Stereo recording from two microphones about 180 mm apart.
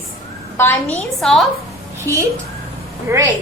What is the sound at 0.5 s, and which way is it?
Speech, 15° left (ahead or behind).